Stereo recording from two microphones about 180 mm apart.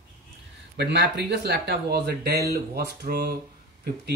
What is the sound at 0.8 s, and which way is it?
Speech, 70° right (ahead or behind).